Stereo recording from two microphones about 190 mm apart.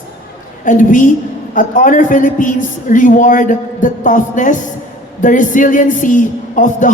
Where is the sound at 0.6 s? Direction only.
45° left (ahead or behind).